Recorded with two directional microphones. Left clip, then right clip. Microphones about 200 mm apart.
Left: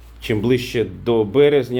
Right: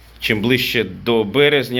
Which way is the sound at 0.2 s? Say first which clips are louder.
Right 2 dB; 5° left (ahead or behind).